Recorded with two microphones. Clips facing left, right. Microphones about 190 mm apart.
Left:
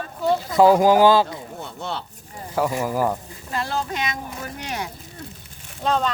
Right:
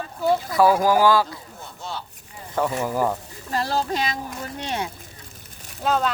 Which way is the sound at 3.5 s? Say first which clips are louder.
Right 2 dB; 35° right (ahead or behind).